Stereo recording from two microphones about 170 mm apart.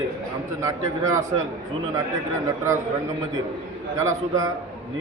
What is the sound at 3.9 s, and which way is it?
Speech, 20° right (ahead or behind).